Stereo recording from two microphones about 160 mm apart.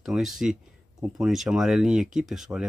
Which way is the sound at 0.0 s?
Centre (ahead or behind).